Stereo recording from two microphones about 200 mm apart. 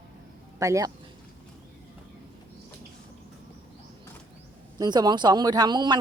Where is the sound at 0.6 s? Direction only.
15° right (ahead or behind).